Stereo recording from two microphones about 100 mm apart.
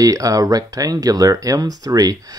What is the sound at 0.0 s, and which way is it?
Speech, 35° right (ahead or behind).